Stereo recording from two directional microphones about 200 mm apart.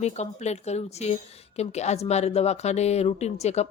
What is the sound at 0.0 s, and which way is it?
Speech, 35° left (ahead or behind).